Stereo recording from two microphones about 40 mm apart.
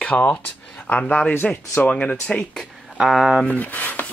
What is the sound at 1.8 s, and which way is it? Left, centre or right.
Speech, left.